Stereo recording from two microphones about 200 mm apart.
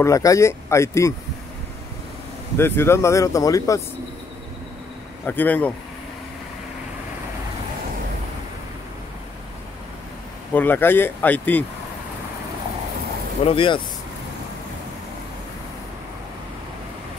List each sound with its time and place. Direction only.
0.0 s speech: 15° left (ahead or behind)
2.5 s speech: 10° left (ahead or behind)
5.2 s speech: 10° left (ahead or behind)
10.5 s speech: 10° left (ahead or behind)
13.4 s speech: 25° left (ahead or behind)